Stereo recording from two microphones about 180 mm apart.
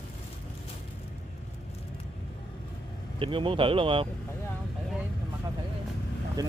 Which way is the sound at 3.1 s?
30° right (ahead or behind).